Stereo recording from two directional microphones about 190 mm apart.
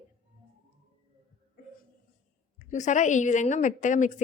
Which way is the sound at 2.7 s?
40° left (ahead or behind).